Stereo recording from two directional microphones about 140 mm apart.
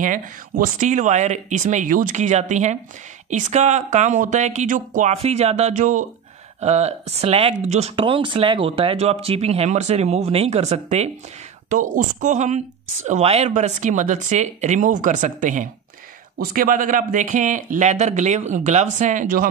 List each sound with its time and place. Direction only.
0.0 s speech: 75° right (ahead or behind)
5.1 s speech: 50° right (ahead or behind)
6.6 s speech: 50° right (ahead or behind)
7.9 s speech: 40° right (ahead or behind)
11.7 s speech: 70° right (ahead or behind)
16.3 s speech: 85° right